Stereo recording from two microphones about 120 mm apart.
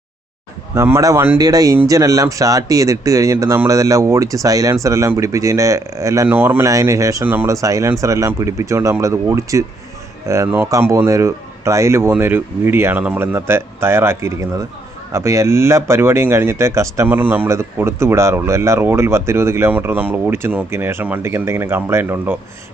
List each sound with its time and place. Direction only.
0.8 s speech: 25° right (ahead or behind)
6.2 s speech: 15° right (ahead or behind)